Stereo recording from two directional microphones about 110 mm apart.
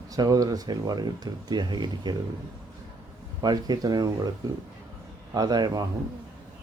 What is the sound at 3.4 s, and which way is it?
Speech, 40° right (ahead or behind).